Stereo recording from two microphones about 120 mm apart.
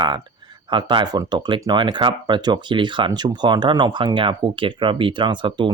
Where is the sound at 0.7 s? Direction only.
45° right (ahead or behind).